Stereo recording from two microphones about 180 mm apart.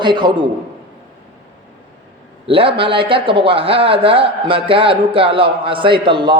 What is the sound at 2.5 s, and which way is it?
A man's voice, 30° right (ahead or behind).